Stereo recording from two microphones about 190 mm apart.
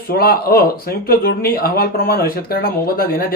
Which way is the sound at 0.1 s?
50° left (ahead or behind).